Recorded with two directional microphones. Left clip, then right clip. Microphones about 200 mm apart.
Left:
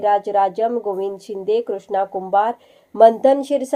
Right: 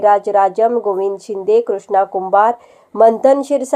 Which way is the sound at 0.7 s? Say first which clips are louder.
Right 6 dB; 30° right (ahead or behind).